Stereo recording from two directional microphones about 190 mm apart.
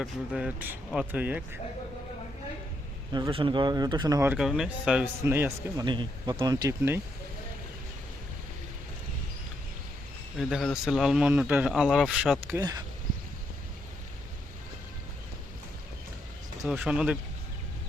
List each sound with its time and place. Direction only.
0.0 s speech: 5° right (ahead or behind)
3.1 s speech: 25° right (ahead or behind)
4.4 s speech: centre (ahead or behind)
5.8 s speech: 25° right (ahead or behind)
10.3 s speech: centre (ahead or behind)
12.5 s speech: 20° right (ahead or behind)
16.6 s speech: 5° right (ahead or behind)